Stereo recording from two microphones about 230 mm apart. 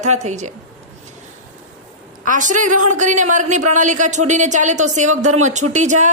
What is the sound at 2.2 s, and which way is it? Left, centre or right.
Speech, right.